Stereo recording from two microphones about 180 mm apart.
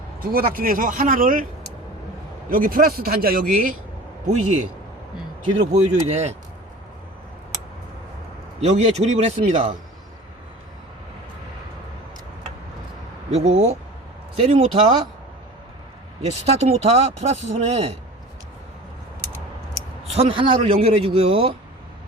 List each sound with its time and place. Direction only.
0.2 s speech: 55° right (ahead or behind)
2.5 s speech: 50° right (ahead or behind)
5.7 s speech: 40° right (ahead or behind)
8.6 s speech: 35° right (ahead or behind)
13.3 s speech: 35° right (ahead or behind)
16.5 s speech: 35° right (ahead or behind)
20.1 s speech: 30° right (ahead or behind)